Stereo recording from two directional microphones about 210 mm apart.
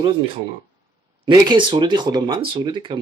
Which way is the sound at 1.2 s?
20° right (ahead or behind).